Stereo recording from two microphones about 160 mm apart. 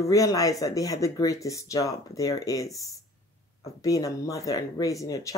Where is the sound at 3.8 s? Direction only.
20° left (ahead or behind).